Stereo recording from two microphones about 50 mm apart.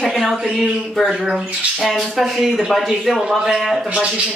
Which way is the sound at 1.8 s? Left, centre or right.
Centre.